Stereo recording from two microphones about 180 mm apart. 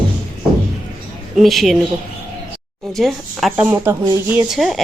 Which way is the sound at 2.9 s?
Centre (ahead or behind).